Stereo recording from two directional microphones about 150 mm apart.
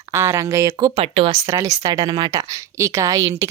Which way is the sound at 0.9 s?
40° right (ahead or behind).